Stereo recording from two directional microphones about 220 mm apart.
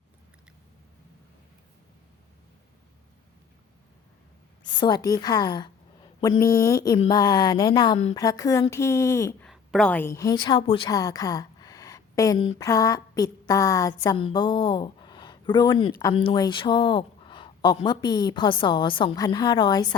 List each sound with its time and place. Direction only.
4.8 s a woman's voice: 20° left (ahead or behind)